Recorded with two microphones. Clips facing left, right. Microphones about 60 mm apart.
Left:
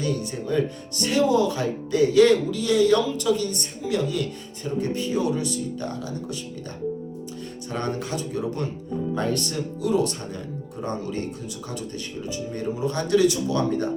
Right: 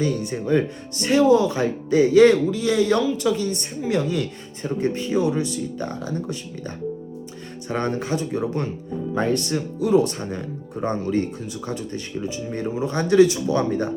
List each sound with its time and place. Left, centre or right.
0.0 s speech: right
7.7 s speech: right